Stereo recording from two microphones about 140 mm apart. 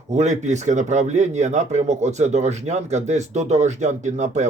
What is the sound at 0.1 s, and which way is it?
Speech, 55° right (ahead or behind).